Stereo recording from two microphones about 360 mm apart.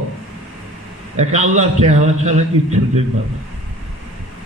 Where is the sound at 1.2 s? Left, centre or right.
Centre.